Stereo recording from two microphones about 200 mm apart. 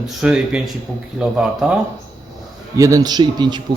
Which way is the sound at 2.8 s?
15° right (ahead or behind).